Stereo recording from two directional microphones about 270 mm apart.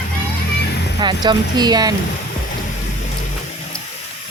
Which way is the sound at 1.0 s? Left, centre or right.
Centre.